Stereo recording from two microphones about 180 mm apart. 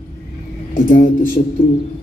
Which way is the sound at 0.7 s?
50° left (ahead or behind).